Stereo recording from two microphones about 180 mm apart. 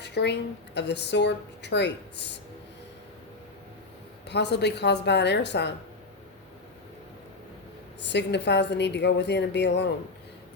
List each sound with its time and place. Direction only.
0.0 s a woman's voice: 70° left (ahead or behind)
4.3 s a woman's voice: 70° left (ahead or behind)
8.0 s a woman's voice: 70° left (ahead or behind)